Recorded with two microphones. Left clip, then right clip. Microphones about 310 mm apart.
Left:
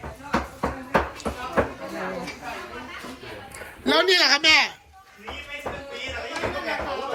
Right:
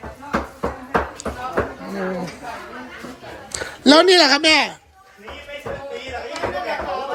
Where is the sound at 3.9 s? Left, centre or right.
Centre.